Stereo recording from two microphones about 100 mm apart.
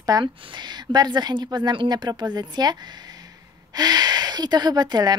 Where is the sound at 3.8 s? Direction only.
40° right (ahead or behind).